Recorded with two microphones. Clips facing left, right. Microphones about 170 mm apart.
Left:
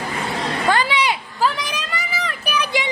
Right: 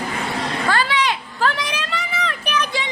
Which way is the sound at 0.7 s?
15° left (ahead or behind).